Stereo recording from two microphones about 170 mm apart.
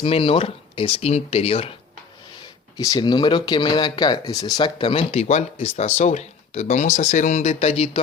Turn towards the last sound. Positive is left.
turn(degrees=35)  # may be behind; listen again after turning